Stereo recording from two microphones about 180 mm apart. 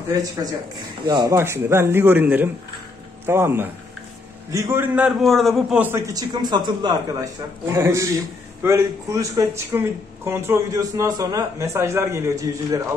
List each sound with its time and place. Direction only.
0.4 s speech: 20° right (ahead or behind)